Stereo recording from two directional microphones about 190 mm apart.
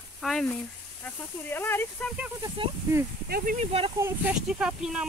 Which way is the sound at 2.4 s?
20° right (ahead or behind).